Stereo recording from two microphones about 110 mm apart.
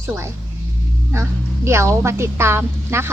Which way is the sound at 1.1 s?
25° right (ahead or behind).